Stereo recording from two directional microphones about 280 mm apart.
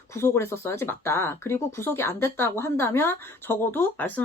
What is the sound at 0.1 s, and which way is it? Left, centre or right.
Speech, centre.